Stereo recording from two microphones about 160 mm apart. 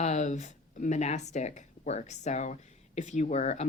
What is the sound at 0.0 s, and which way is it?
Speech, 45° left (ahead or behind).